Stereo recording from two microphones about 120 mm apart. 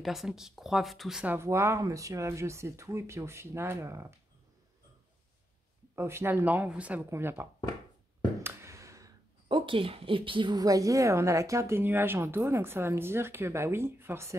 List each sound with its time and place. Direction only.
0.0 s a woman's voice: centre (ahead or behind)
1.2 s a woman's voice: 20° right (ahead or behind)
5.9 s a woman's voice: 20° right (ahead or behind)
8.4 s a sound: 25° right (ahead or behind)
9.5 s a woman's voice: 45° right (ahead or behind); by 14.3 s 20° right (ahead or behind)